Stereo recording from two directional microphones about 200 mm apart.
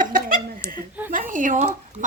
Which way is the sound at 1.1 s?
40° right (ahead or behind).